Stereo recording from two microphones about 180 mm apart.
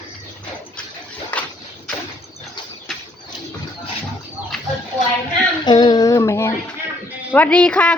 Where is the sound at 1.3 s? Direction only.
10° left (ahead or behind).